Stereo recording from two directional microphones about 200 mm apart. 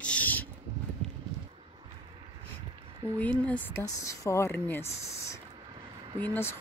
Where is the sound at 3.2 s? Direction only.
5° left (ahead or behind).